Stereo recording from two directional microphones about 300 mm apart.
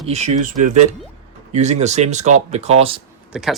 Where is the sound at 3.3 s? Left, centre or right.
Centre.